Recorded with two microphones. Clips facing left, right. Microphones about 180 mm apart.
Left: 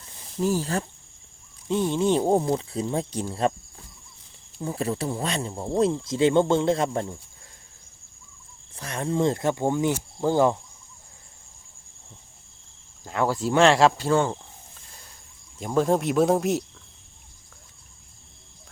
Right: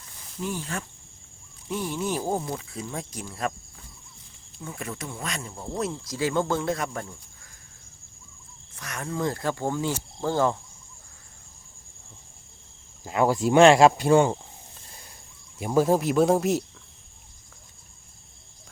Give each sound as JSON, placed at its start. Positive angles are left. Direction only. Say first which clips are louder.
{"t": 0.3, "sound": "speech", "louder": "left 7 dB", "side_deg": 35}
{"t": 1.6, "sound": "speech", "louder": "left 7 dB", "side_deg": 25}
{"t": 4.6, "sound": "speech", "louder": "left 8 dB", "side_deg": 30}
{"t": 8.7, "sound": "speech", "louder": "left 6 dB", "side_deg": 30}
{"t": 13.1, "sound": "speech", "louder": "right 2 dB", "side_deg": -10}
{"t": 15.5, "sound": "speech", "louder": "right 1 dB", "side_deg": -5}